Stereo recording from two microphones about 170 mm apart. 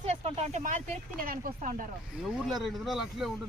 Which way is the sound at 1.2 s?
55° right (ahead or behind).